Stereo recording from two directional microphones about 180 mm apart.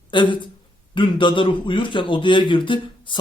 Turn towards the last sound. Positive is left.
turn(degrees=25)  # may be behind; listen again after turning